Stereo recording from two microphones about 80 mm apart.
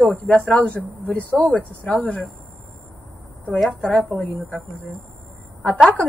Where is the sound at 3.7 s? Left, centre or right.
Centre.